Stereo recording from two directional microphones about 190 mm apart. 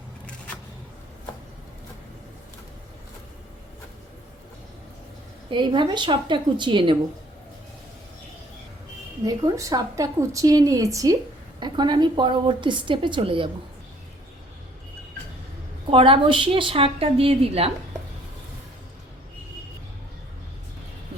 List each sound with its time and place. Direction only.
5.5 s a woman's voice: 25° right (ahead or behind)
9.2 s a woman's voice: 15° right (ahead or behind)
15.9 s a woman's voice: 30° right (ahead or behind)